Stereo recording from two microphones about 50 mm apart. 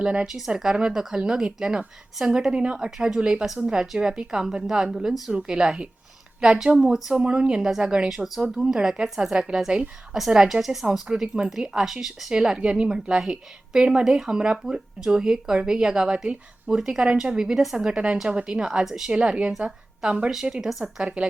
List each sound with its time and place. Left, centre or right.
0.0 s a woman's voice: right
0.3 s a woman's voice: centre
12.3 s a woman's voice: centre
17.8 s a woman's voice: centre
19.1 s a woman's voice: centre
20.3 s a woman's voice: centre
21.0 s a woman's voice: right